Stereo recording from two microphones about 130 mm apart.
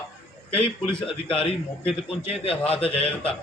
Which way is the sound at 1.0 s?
45° left (ahead or behind).